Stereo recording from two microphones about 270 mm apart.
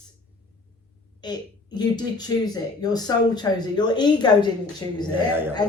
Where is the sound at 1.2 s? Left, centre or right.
Centre.